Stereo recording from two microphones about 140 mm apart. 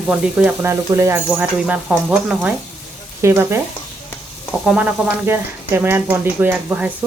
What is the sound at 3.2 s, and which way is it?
Speech, 20° right (ahead or behind).